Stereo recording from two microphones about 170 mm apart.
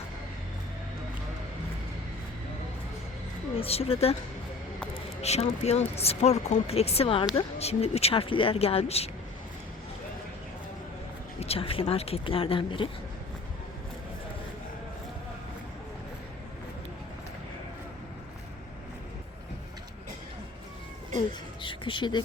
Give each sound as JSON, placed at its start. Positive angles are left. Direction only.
{"t": 3.6, "sound": "speech", "side_deg": 35}
{"t": 5.2, "sound": "speech", "side_deg": 40}
{"t": 11.3, "sound": "speech", "side_deg": 35}
{"t": 21.6, "sound": "a sound", "side_deg": 30}